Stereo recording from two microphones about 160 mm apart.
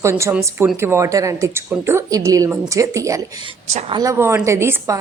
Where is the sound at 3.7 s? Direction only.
45° right (ahead or behind).